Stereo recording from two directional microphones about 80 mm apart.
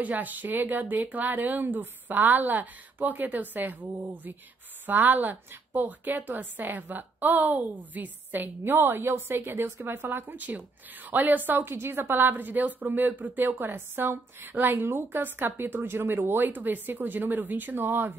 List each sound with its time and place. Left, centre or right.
0.0 s a woman's voice: right